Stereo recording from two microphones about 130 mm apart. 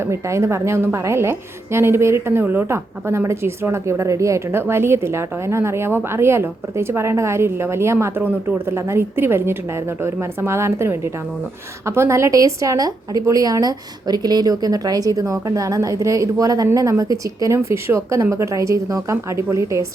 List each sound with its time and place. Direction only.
0.0 s a woman's voice: 20° right (ahead or behind)